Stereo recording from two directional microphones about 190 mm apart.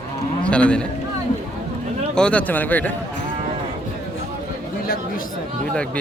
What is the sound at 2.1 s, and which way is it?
Speech, 5° left (ahead or behind).